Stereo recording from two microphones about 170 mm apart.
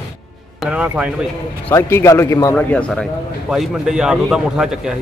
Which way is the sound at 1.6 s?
15° left (ahead or behind).